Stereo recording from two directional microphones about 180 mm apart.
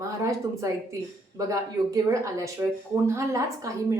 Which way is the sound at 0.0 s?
15° right (ahead or behind).